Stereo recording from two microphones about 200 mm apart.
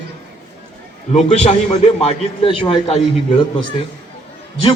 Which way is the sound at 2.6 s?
25° left (ahead or behind).